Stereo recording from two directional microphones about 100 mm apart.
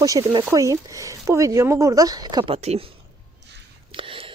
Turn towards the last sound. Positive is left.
turn(degrees=-60)  # may be behind; listen again after turning